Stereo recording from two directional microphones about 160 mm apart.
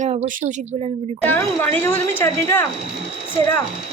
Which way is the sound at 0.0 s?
45° right (ahead or behind).